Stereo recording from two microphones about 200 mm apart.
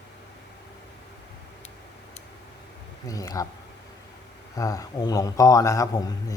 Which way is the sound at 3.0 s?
15° left (ahead or behind).